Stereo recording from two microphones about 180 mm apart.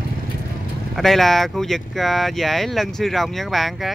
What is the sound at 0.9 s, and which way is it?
Speech, centre (ahead or behind).